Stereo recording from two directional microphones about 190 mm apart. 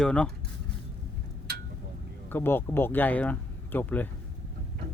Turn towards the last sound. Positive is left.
turn(degrees=10)  # may be behind; listen again after turning